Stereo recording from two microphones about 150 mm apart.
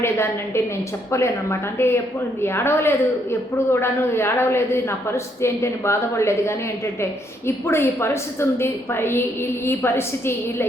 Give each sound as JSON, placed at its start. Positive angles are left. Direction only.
{"t": 0.0, "sound": "a woman's voice", "side_deg": 15}